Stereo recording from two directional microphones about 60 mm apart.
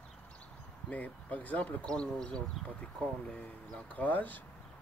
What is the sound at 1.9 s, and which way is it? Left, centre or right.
Speech, centre.